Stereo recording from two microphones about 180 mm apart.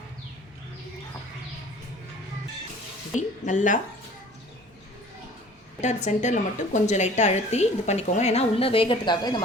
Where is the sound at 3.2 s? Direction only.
45° left (ahead or behind).